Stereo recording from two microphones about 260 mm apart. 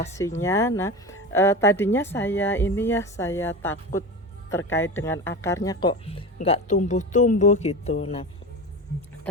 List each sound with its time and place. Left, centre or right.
0.0 s speech: centre